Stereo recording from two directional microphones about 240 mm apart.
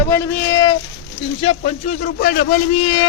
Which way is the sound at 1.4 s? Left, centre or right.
Left.